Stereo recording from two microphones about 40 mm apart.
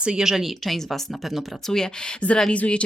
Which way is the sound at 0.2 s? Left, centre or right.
Centre.